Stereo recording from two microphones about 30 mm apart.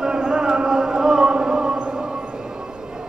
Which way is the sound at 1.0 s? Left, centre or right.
Right.